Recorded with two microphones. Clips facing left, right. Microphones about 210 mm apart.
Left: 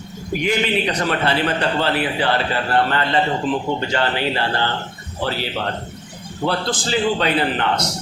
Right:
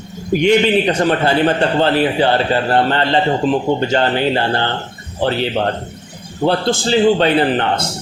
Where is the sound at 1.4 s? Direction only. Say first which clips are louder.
Right 6 dB; 30° right (ahead or behind).